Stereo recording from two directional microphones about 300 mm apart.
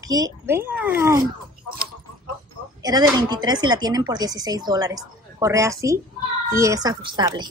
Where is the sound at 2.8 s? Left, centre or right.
Centre.